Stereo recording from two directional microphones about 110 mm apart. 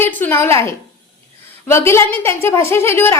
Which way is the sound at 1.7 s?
25° left (ahead or behind).